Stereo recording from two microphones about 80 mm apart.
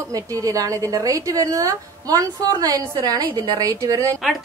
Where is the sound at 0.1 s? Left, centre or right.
Right.